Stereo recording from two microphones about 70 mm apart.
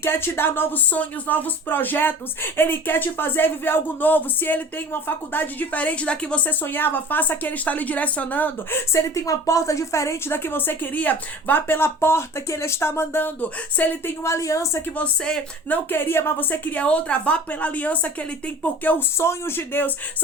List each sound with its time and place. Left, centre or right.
0.0 s speech: left
8.9 s a woman's voice: left
14.3 s a woman's voice: left
14.9 s speech: centre
15.9 s speech: left
19.2 s a woman's voice: left